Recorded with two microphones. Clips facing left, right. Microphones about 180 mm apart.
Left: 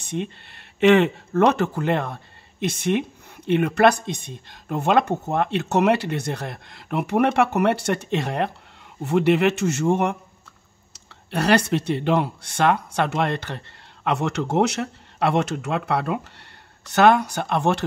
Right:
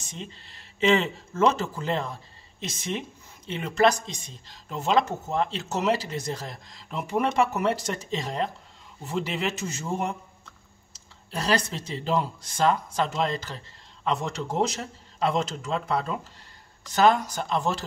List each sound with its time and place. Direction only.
0.0 s speech: 60° left (ahead or behind)
11.3 s speech: 70° left (ahead or behind)